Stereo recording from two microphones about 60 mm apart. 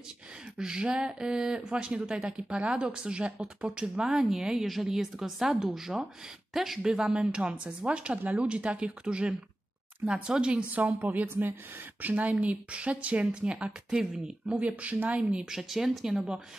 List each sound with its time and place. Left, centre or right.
0.6 s a woman's voice: centre
10.7 s a woman's voice: right; by 14.3 s centre
14.5 s a woman's voice: right
15.4 s speech: centre